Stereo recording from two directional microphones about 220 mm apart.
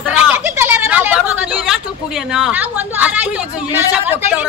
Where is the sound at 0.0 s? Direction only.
5° right (ahead or behind).